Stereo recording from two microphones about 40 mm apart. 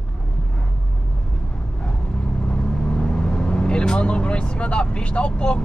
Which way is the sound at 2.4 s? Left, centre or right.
Left.